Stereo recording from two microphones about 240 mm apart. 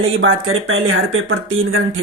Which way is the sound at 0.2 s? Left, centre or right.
Right.